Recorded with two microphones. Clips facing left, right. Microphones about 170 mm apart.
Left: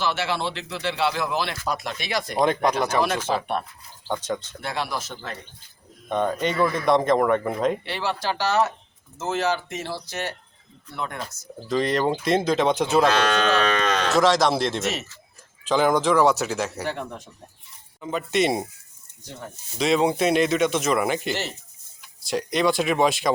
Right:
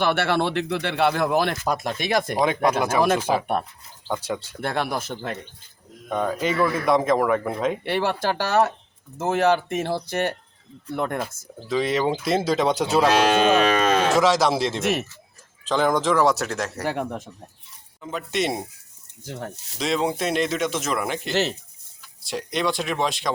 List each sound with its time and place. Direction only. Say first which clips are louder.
0.0 s speech: right 4 dB; 60° right (ahead or behind)
2.4 s speech: left 2 dB; 5° right (ahead or behind)
3.3 s moo: right 2 dB; 15° right (ahead or behind)
4.6 s speech: right 3 dB; 55° right (ahead or behind)
6.1 s speech: even; centre (ahead or behind)
7.9 s speech: right 4 dB; 50° right (ahead or behind)
11.7 s speech: even; centre (ahead or behind)
12.8 s moo: right 1 dB; 5° right (ahead or behind)
15.6 s speech: left 1 dB; 5° left (ahead or behind)
16.9 s speech: right 5 dB; 55° right (ahead or behind)
18.0 s speech: left 3 dB; centre (ahead or behind)
19.8 s speech: left 3 dB; 5° left (ahead or behind)